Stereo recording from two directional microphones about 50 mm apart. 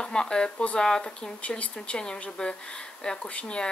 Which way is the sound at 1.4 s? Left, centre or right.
Left.